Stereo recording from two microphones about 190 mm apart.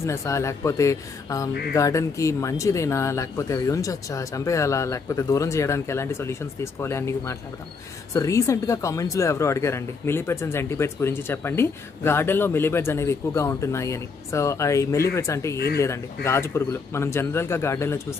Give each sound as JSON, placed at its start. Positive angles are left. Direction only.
{"t": 0.0, "sound": "speech", "side_deg": 15}
{"t": 15.5, "sound": "speech", "side_deg": 55}
{"t": 16.3, "sound": "speech", "side_deg": 15}